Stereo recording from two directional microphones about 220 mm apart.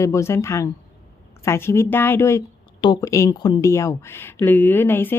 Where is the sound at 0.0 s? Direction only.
15° left (ahead or behind).